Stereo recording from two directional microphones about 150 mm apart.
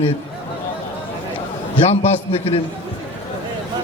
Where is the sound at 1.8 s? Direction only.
40° left (ahead or behind).